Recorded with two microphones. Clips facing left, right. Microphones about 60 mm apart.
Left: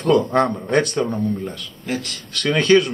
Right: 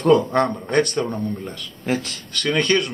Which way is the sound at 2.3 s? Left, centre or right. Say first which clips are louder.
Left 4 dB; centre.